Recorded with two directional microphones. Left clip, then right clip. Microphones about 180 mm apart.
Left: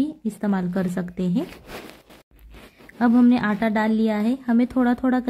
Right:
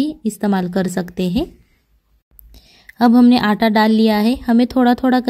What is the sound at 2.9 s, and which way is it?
A woman's voice, 30° right (ahead or behind).